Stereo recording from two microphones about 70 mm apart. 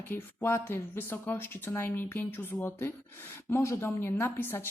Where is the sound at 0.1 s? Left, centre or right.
Left.